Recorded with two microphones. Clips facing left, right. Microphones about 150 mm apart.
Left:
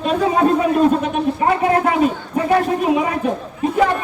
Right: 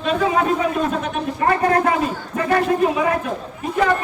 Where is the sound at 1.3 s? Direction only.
15° left (ahead or behind).